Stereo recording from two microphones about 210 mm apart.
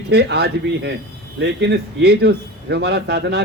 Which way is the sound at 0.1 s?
50° right (ahead or behind).